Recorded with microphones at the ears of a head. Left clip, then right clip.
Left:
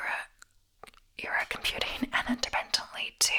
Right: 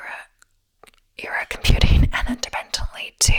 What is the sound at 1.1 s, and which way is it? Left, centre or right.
Whispering, right.